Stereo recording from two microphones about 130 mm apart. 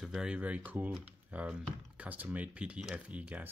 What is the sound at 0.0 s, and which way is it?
Speech, 5° right (ahead or behind).